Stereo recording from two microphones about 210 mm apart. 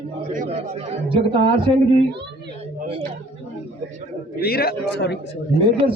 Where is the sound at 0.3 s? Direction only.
30° right (ahead or behind).